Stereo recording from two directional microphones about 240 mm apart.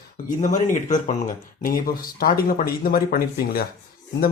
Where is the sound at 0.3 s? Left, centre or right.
Left.